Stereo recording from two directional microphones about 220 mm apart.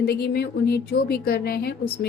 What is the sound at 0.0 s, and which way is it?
A woman's voice, 45° left (ahead or behind).